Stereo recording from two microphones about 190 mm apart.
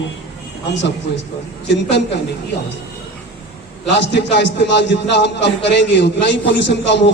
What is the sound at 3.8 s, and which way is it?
A man's voice, 65° left (ahead or behind).